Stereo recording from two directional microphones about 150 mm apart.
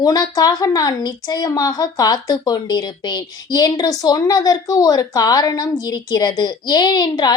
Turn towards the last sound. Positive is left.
turn(degrees=25)  # may be behind; listen again after turning